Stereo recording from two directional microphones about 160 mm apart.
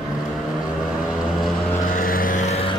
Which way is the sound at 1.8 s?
60° left (ahead or behind).